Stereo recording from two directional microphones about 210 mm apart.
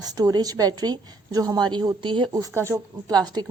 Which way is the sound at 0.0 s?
20° right (ahead or behind).